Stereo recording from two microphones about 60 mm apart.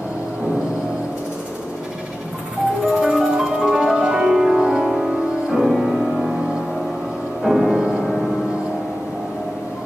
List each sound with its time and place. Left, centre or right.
2.9 s music: centre
7.4 s music: centre